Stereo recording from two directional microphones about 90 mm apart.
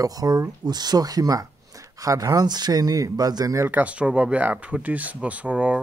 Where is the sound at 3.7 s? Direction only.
15° right (ahead or behind).